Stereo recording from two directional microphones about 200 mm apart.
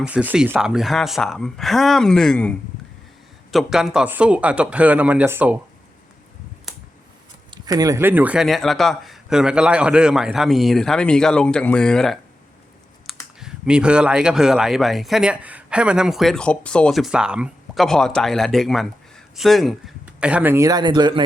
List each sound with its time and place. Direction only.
0.0 s speech: 5° right (ahead or behind)
7.5 s speech: 20° right (ahead or behind); by 12.2 s centre (ahead or behind)
13.1 s computer keyboard: centre (ahead or behind)
13.4 s speech: 5° right (ahead or behind); by 21.2 s 20° right (ahead or behind)